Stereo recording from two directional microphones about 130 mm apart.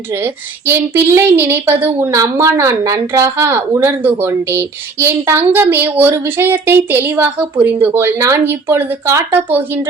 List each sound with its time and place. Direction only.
0.2 s a woman's voice: 15° right (ahead or behind)